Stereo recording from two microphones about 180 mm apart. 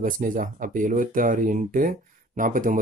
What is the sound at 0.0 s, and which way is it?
Speech, 50° right (ahead or behind).